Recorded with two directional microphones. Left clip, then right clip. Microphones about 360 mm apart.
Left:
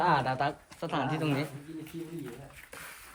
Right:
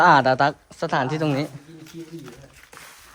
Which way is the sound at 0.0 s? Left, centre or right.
Centre.